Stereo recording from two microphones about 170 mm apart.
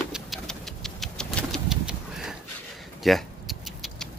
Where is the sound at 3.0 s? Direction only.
Centre (ahead or behind).